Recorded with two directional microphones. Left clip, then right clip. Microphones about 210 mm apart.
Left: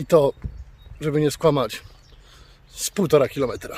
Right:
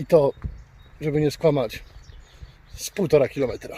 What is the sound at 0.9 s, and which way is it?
Speech, 60° left (ahead or behind).